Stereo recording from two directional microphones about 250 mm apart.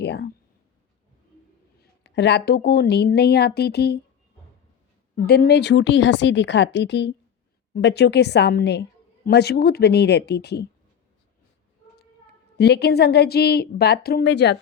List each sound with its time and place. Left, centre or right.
0.0 s speech: left
1.8 s a woman's voice: left
5.1 s a woman's voice: left
12.5 s a woman's voice: left